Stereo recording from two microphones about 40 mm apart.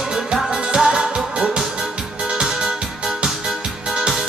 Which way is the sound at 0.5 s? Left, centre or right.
Right.